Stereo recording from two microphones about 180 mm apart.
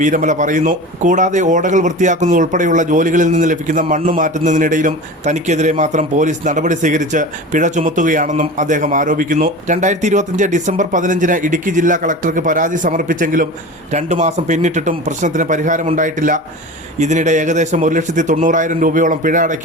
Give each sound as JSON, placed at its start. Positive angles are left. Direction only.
{"t": 0.0, "sound": "speech", "side_deg": -45}